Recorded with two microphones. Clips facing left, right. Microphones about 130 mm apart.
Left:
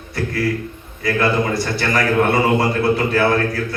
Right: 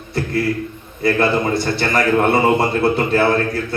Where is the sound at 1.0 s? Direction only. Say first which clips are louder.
Right 2 dB; 25° right (ahead or behind).